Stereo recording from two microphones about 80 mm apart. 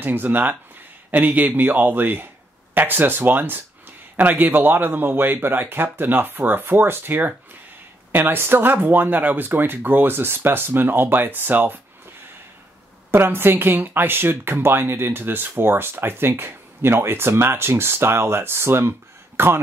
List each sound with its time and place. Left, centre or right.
0.0 s speech: right
13.1 s speech: right